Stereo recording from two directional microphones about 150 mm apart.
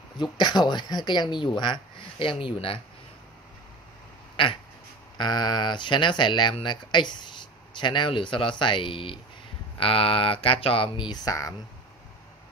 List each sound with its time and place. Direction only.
0.4 s speech: 30° left (ahead or behind)
5.1 s speech: 30° left (ahead or behind)